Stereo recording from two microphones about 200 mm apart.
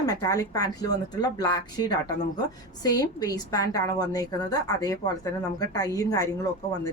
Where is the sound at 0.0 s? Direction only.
15° left (ahead or behind).